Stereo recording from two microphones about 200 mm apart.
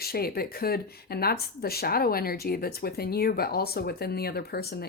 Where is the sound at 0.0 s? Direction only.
50° left (ahead or behind).